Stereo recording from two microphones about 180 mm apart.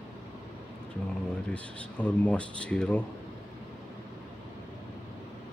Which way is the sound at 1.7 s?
5° left (ahead or behind).